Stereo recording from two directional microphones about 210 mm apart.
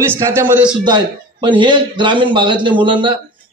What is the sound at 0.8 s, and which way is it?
A man's voice, 20° right (ahead or behind).